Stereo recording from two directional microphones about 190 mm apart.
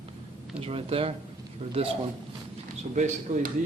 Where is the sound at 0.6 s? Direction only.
30° right (ahead or behind).